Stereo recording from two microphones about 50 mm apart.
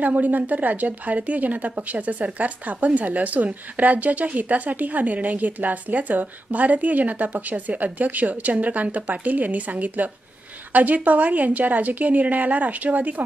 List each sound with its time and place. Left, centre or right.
0.0 s speech: right